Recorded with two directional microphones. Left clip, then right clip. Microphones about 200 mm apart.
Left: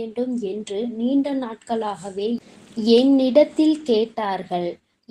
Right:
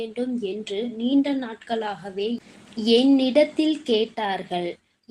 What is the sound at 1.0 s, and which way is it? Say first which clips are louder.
A woman's voice: even; 30° left (ahead or behind).